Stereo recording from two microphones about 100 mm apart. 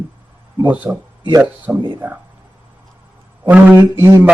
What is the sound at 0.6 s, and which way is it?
A man's voice, 15° right (ahead or behind).